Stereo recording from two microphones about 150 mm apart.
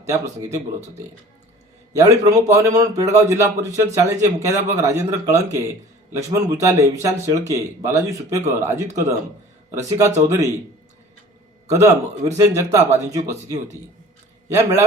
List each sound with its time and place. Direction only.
0.0 s a man's voice: 20° right (ahead or behind)
10.2 s a man's voice: 20° right (ahead or behind)
11.7 s a man's voice: 20° right (ahead or behind)